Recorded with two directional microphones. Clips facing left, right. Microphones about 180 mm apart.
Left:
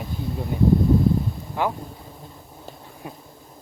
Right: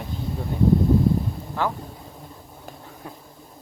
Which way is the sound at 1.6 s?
15° left (ahead or behind).